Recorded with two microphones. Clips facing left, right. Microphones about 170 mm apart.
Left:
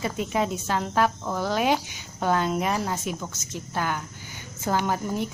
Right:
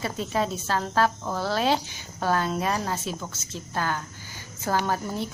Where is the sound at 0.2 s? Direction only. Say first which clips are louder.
Even; 15° left (ahead or behind).